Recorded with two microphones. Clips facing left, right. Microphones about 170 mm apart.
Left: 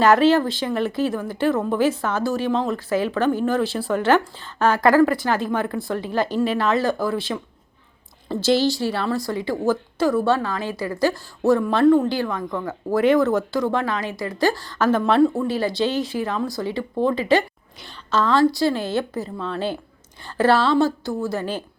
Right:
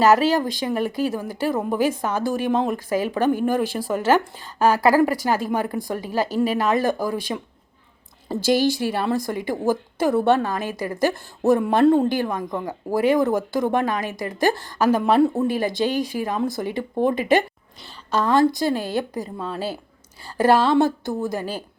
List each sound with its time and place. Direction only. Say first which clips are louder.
0.0 s speech: left 1 dB; 10° right (ahead or behind)
8.4 s speech: even; 15° right (ahead or behind)